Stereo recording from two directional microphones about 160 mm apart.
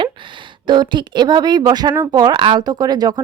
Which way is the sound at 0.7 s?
30° right (ahead or behind).